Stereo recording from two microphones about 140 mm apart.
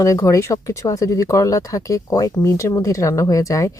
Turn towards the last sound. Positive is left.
turn(degrees=25)  # may be behind; listen again after turning